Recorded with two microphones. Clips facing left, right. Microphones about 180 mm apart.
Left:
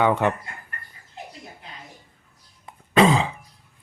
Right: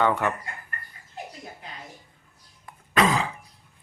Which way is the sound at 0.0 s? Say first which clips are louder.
Left 3 dB; 20° left (ahead or behind).